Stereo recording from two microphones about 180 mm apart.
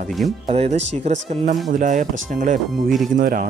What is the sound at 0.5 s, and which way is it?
Speech, 35° right (ahead or behind).